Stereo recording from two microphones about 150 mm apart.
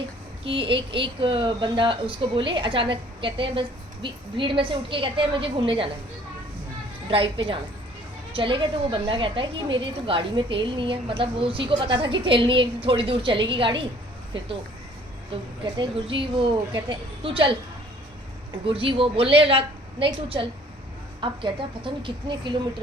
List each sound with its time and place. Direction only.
0.4 s a woman's voice: 35° right (ahead or behind)
7.1 s a woman's voice: 35° right (ahead or behind)
15.8 s a woman's voice: 35° right (ahead or behind)
18.6 s a woman's voice: 35° right (ahead or behind)